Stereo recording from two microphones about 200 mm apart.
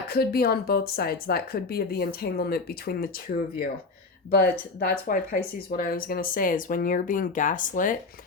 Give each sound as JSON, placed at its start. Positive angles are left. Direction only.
{"t": 0.1, "sound": "speech", "side_deg": 50}
{"t": 4.4, "sound": "speech", "side_deg": 45}